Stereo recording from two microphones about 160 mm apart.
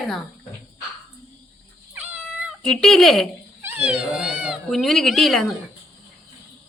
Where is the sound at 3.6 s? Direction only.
10° right (ahead or behind).